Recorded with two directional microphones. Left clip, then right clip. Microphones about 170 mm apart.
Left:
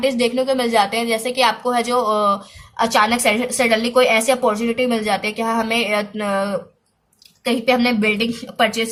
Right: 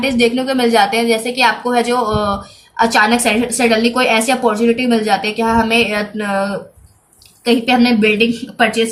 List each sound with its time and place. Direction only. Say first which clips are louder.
0.0 s a woman's voice: right 3 dB; 15° left (ahead or behind)
8.5 s a woman's voice: right 3 dB; 30° left (ahead or behind)